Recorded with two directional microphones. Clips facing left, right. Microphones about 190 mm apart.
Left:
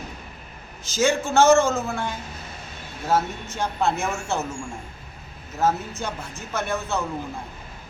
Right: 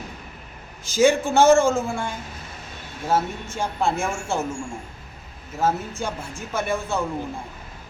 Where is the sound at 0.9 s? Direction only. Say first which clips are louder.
Right 3 dB; 15° right (ahead or behind).